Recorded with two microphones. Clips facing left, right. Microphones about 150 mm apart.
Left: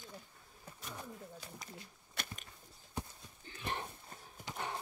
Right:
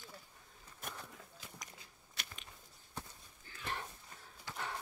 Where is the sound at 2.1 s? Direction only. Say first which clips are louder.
Left 5 dB; 50° left (ahead or behind).